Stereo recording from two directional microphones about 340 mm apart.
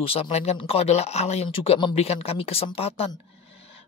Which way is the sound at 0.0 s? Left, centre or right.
Centre.